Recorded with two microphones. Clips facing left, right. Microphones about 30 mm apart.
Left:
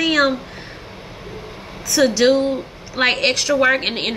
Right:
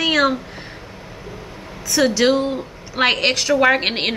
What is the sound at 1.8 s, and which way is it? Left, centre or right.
A woman's voice, centre.